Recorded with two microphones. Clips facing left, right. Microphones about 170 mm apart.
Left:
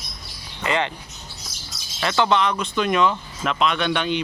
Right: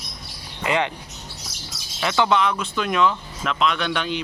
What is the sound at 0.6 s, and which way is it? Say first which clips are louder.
Speech: right 1 dB; 10° right (ahead or behind).